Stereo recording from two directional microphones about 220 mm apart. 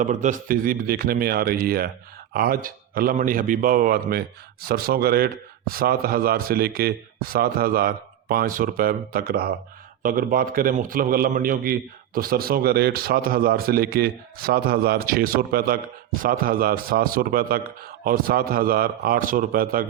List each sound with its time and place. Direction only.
0.0 s a man's voice: 35° right (ahead or behind)